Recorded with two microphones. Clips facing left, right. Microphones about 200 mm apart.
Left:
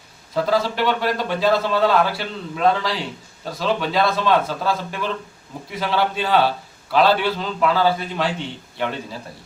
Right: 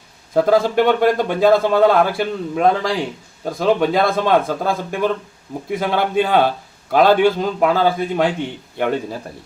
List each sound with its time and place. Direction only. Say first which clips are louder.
0.3 s a man's voice: right 6 dB; 50° right (ahead or behind)